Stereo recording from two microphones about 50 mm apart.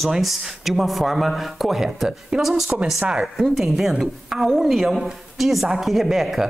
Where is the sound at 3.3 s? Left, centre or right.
Centre.